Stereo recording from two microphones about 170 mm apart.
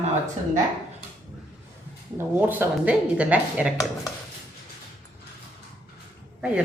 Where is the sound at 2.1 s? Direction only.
10° right (ahead or behind).